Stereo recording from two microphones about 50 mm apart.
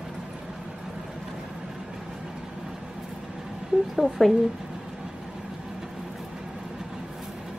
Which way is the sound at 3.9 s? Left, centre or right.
Centre.